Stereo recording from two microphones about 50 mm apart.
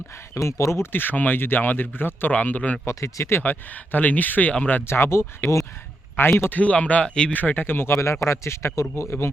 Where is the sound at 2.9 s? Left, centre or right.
Left.